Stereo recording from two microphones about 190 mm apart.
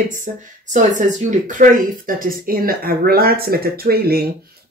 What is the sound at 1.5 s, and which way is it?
Speech, 45° right (ahead or behind).